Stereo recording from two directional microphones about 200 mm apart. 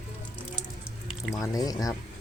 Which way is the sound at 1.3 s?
15° left (ahead or behind).